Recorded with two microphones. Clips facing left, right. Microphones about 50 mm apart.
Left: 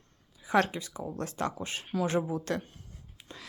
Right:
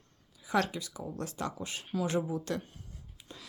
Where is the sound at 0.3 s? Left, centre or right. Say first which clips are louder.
Left 4 dB; left.